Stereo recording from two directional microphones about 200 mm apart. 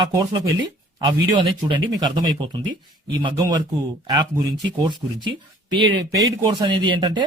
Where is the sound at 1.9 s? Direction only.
20° right (ahead or behind).